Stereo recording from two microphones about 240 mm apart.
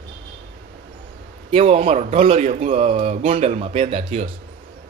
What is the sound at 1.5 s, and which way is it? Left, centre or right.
Speech, right.